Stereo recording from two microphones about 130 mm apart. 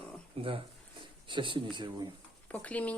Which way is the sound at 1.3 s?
40° right (ahead or behind).